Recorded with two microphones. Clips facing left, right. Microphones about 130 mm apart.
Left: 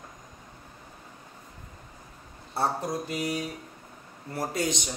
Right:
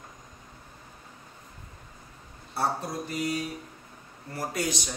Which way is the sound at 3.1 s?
20° left (ahead or behind).